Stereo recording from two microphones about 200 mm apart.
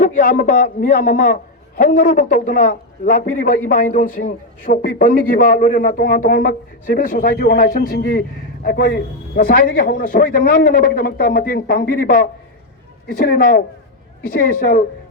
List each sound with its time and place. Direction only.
0.0 s a man's voice: 40° left (ahead or behind)